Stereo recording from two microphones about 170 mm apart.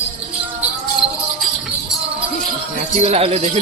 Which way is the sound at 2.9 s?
40° right (ahead or behind).